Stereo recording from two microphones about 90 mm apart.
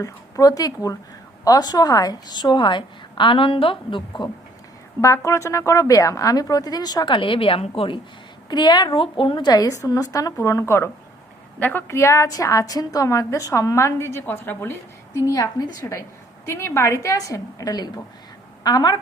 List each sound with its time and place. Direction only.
0.0 s a woman's voice: 40° left (ahead or behind); by 4.3 s 60° left (ahead or behind)
4.9 s a woman's voice: 35° left (ahead or behind); by 7.6 s 90° left
8.4 s a woman's voice: 55° left (ahead or behind); by 10.9 s 30° left (ahead or behind)
11.6 s a woman's voice: 20° left (ahead or behind)
15.1 s a woman's voice: 40° left (ahead or behind)